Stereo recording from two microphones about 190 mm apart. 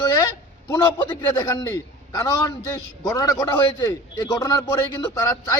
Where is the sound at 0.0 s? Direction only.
20° left (ahead or behind).